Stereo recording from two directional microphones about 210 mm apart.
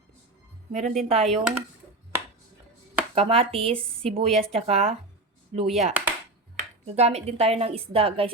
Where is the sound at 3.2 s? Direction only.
25° right (ahead or behind).